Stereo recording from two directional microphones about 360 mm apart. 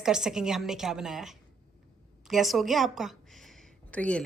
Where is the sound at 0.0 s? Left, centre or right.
Centre.